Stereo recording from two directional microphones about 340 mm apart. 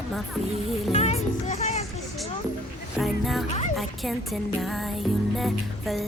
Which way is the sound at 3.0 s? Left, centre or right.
Centre.